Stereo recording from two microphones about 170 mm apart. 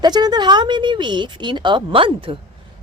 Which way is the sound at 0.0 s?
25° right (ahead or behind).